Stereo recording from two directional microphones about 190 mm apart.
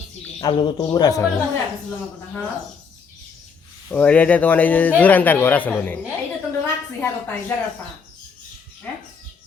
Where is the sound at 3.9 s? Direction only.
5° left (ahead or behind).